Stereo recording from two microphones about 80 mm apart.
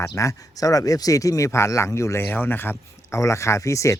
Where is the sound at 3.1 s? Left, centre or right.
Left.